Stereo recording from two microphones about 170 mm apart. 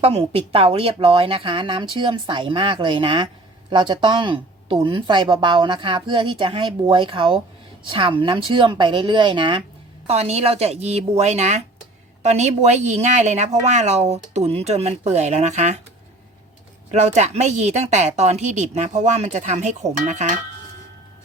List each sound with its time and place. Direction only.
0.0 s a woman's voice: 35° right (ahead or behind)
16.9 s speech: 45° right (ahead or behind)